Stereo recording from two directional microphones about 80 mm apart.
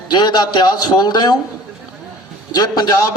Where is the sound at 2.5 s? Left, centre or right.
Left.